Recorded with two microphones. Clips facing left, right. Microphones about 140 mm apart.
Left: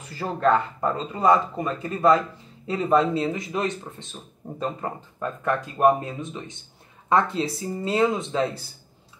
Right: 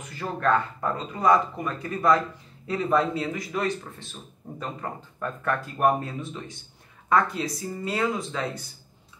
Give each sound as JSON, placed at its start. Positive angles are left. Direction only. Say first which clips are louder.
{"t": 0.0, "sound": "speech", "louder": "left 4 dB", "side_deg": 30}